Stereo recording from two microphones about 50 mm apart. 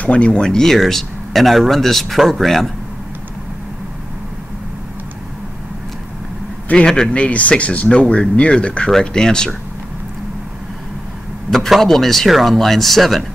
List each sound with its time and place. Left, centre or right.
0.0 s speech: left
0.5 s speech: centre
6.7 s speech: centre
7.2 s speech: left
11.5 s speech: centre